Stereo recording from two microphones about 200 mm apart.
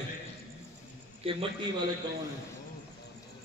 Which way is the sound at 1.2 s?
25° right (ahead or behind).